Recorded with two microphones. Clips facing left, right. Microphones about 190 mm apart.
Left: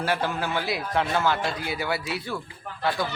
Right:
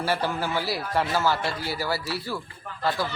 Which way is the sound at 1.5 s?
20° left (ahead or behind).